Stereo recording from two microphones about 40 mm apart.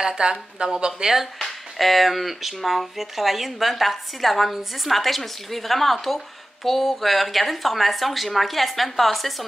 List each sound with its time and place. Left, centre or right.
0.0 s speech: centre
1.1 s speech: centre